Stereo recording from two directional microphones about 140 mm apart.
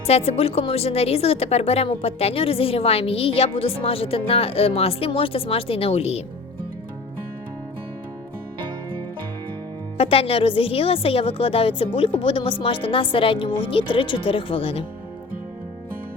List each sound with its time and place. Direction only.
0.1 s a woman's voice: 45° left (ahead or behind)
10.0 s speech: 40° left (ahead or behind)